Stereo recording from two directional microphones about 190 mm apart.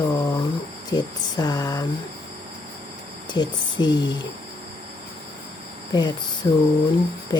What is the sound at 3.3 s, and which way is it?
Speech, 20° left (ahead or behind).